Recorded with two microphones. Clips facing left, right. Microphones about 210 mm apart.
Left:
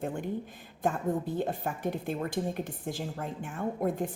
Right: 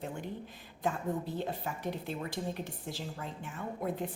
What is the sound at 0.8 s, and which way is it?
Speech, 50° left (ahead or behind).